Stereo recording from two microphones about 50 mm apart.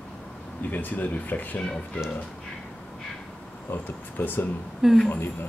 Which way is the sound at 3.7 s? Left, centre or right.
Left.